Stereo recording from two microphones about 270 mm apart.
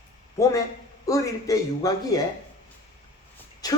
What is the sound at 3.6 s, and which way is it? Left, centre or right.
Speech, centre.